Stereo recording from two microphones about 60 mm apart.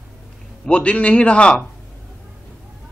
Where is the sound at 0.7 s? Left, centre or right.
Left.